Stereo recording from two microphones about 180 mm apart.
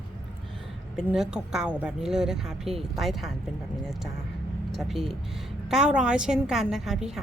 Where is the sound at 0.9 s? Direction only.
5° right (ahead or behind).